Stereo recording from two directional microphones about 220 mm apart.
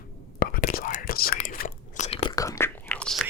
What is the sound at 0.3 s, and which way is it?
Whispering, 40° left (ahead or behind).